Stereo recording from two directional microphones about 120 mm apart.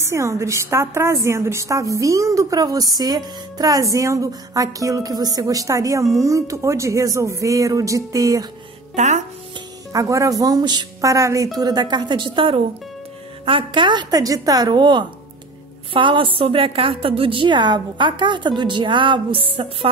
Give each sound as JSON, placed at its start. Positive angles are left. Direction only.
{"t": 0.0, "sound": "a woman's voice", "side_deg": -25}
{"t": 8.9, "sound": "speech", "side_deg": -80}
{"t": 9.9, "sound": "a woman's voice", "side_deg": -25}
{"t": 11.1, "sound": "a woman's voice", "side_deg": -25}